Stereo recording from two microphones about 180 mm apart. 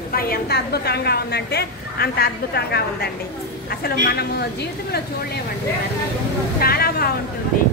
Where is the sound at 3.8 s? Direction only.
60° left (ahead or behind).